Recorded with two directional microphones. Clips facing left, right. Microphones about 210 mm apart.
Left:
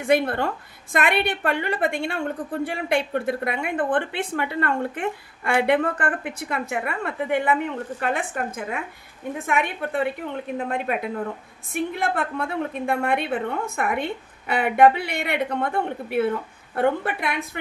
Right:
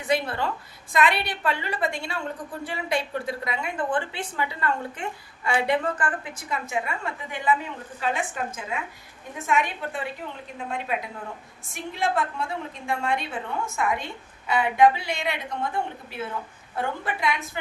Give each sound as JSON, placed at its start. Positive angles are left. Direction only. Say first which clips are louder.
{"t": 0.0, "sound": "a woman's voice", "louder": "left 5 dB", "side_deg": 55}